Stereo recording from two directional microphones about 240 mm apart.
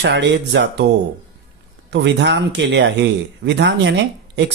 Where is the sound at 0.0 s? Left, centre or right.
Right.